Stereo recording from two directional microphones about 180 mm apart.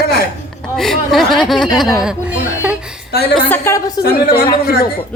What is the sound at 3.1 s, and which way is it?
Speech, 60° left (ahead or behind).